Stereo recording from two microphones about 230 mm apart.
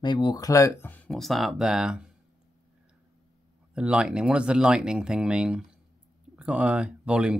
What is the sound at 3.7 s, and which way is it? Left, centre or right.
Speech, centre.